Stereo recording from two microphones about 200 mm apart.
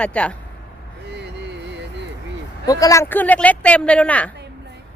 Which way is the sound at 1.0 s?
55° right (ahead or behind).